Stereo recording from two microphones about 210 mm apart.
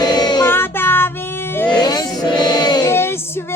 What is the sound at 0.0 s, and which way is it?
Music, 20° left (ahead or behind).